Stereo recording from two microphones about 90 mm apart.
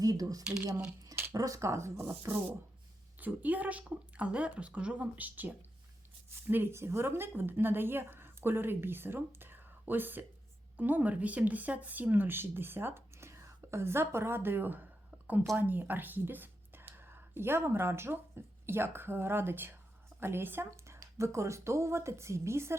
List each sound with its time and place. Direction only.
0.0 s a woman's voice: 40° right (ahead or behind)